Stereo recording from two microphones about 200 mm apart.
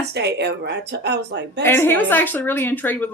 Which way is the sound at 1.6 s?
10° left (ahead or behind).